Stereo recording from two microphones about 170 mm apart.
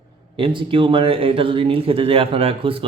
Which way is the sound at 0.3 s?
30° right (ahead or behind).